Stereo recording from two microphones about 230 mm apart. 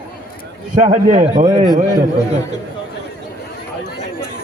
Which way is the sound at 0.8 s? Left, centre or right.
Right.